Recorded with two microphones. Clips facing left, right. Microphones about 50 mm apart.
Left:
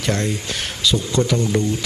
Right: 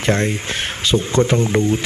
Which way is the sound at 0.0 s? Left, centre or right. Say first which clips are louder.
Right 4 dB; right.